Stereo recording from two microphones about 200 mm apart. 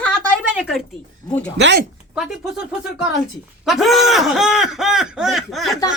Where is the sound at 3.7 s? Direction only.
Centre (ahead or behind).